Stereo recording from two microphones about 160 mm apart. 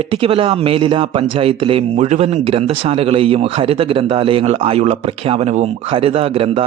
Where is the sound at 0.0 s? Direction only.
35° right (ahead or behind).